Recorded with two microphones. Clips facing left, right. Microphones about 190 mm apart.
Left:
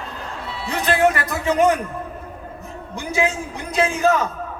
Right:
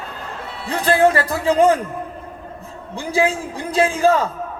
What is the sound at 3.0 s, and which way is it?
Music, 30° right (ahead or behind).